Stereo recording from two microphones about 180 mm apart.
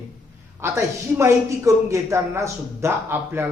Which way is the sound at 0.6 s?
15° right (ahead or behind).